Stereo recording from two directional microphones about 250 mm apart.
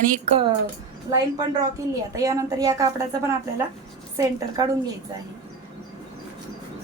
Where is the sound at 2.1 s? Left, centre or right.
Centre.